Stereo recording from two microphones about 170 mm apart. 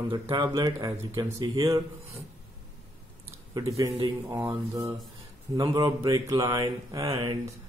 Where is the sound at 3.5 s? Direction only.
20° right (ahead or behind).